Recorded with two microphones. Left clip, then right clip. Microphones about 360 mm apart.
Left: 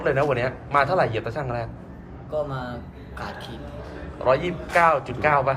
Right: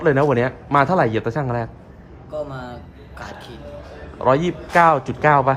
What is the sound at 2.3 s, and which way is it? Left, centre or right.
Speech, centre.